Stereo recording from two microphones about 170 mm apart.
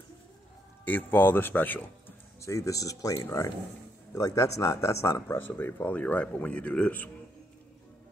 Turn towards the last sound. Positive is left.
turn(degrees=10)  # may be behind; listen again after turning